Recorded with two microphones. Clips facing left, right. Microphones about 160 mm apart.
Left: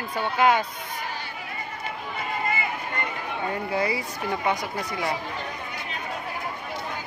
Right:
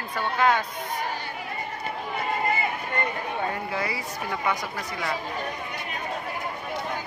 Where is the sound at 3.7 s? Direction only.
25° left (ahead or behind).